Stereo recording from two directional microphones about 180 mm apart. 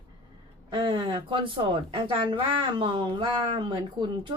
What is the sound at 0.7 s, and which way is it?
A woman's voice, 25° right (ahead or behind).